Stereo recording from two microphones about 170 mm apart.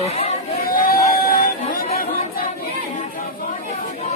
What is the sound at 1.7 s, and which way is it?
Chatter, 60° left (ahead or behind).